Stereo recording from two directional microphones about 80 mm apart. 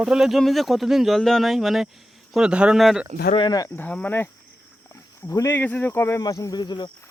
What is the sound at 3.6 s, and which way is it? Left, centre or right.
Speech, left.